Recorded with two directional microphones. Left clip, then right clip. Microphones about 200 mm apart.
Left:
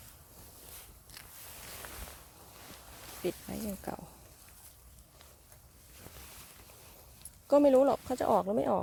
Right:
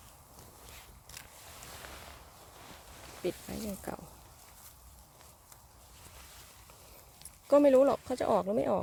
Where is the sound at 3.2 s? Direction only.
20° left (ahead or behind).